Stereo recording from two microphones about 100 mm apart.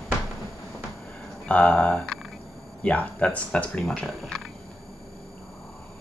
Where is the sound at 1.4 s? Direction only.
10° left (ahead or behind).